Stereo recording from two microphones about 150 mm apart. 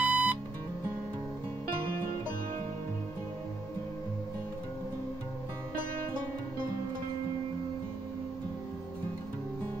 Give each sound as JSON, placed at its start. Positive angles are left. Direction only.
{"t": 0.0, "sound": "music", "side_deg": -10}